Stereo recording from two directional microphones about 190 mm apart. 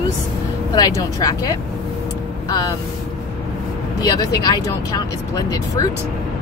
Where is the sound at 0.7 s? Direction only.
20° left (ahead or behind).